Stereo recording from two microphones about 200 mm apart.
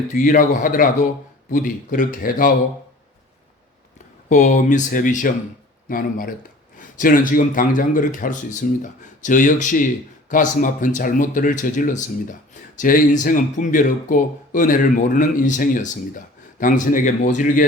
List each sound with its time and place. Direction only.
0.1 s speech: 40° left (ahead or behind)
4.3 s speech: 40° left (ahead or behind)